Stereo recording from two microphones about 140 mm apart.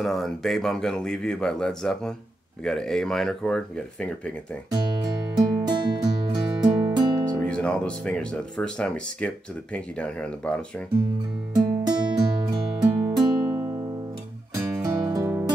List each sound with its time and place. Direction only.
0.0 s speech: centre (ahead or behind)
5.5 s music: 30° right (ahead or behind)
7.3 s speech: 5° left (ahead or behind)
11.5 s music: 30° right (ahead or behind)